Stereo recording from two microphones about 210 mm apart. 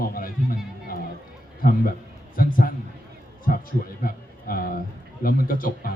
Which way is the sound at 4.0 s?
45° left (ahead or behind).